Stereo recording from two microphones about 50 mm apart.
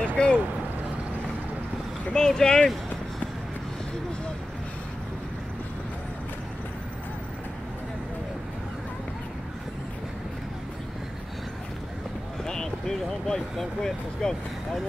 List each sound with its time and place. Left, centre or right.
0.0 s speech: left
2.1 s speech: centre
12.4 s vehicle: centre